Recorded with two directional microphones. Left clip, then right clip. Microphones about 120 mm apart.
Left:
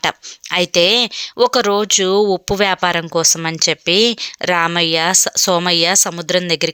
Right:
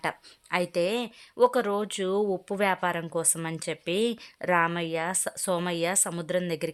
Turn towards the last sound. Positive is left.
turn(degrees=25)  # may be behind; listen again after turning